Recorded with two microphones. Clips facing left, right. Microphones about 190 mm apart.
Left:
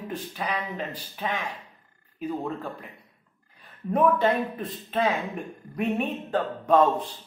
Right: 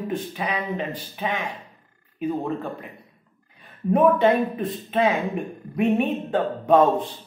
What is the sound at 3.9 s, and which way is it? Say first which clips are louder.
Speech: right 4 dB; 5° right (ahead or behind).